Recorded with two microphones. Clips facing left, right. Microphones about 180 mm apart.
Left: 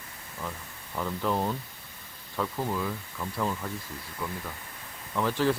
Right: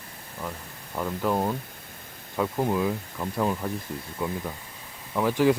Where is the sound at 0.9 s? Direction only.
10° right (ahead or behind).